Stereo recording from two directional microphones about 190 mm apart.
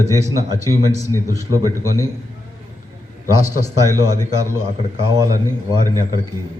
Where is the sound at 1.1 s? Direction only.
15° right (ahead or behind).